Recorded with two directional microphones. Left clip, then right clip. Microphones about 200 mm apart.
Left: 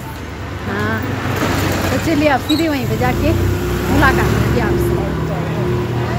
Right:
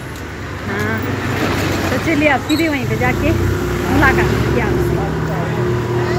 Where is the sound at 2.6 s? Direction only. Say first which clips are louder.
Even; 10° left (ahead or behind).